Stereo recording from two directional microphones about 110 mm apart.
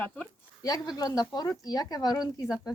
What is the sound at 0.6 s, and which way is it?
Speech, 35° left (ahead or behind).